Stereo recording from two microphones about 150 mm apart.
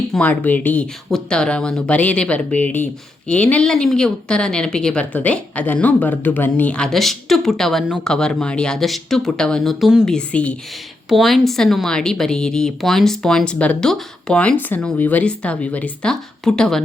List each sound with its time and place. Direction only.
0.1 s speech: 10° left (ahead or behind)
10.2 s speech: 10° left (ahead or behind)